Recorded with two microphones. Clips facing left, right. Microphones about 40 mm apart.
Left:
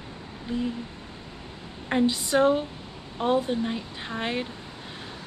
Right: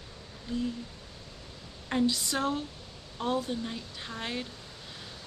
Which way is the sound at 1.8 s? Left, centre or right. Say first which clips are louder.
Left 4 dB; left.